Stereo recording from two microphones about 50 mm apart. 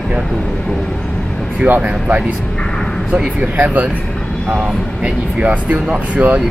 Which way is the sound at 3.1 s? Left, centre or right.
Right.